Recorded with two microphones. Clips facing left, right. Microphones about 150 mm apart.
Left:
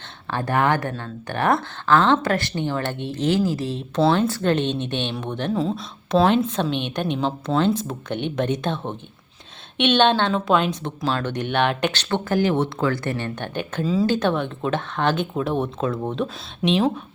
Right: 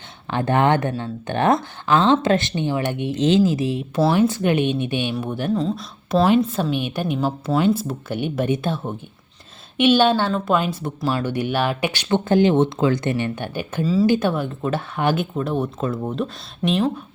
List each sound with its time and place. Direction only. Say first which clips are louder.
0.3 s a woman's voice: right 3 dB; 20° right (ahead or behind); by 16.9 s centre (ahead or behind)